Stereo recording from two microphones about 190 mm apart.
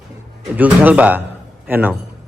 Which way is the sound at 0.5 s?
10° right (ahead or behind).